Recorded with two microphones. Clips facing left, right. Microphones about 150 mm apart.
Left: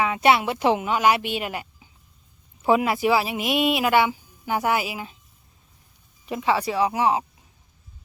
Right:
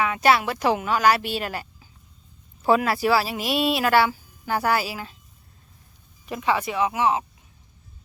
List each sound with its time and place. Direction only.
0.0 s speech: 25° left (ahead or behind)
6.2 s speech: 25° left (ahead or behind)